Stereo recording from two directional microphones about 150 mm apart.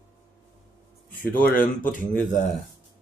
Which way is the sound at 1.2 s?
70° left (ahead or behind).